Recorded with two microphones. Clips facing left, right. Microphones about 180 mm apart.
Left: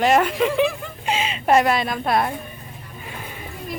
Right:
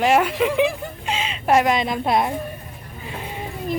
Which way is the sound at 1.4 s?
10° right (ahead or behind).